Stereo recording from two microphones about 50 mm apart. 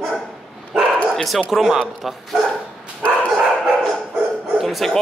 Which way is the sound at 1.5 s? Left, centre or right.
Centre.